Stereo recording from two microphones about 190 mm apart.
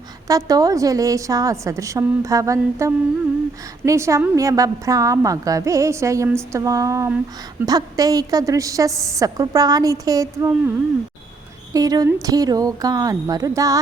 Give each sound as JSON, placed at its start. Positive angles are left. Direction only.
{"t": 0.3, "sound": "a woman's voice", "side_deg": -20}
{"t": 11.7, "sound": "a woman's voice", "side_deg": -20}